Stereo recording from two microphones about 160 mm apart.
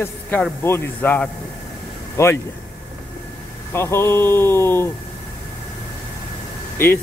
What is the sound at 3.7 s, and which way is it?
Speech, 15° left (ahead or behind).